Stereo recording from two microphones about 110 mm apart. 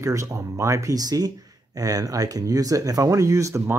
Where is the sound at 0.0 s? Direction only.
30° right (ahead or behind).